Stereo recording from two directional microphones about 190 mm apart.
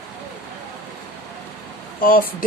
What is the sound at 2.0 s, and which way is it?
Speech, 50° left (ahead or behind).